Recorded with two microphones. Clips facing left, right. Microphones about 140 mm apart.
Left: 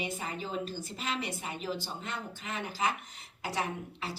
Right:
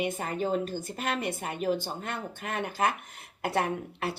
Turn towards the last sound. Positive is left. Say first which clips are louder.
# right 6 dB
turn(degrees=-60)  # may be behind; listen again after turning